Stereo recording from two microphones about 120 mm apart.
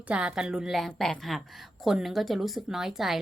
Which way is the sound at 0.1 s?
10° right (ahead or behind).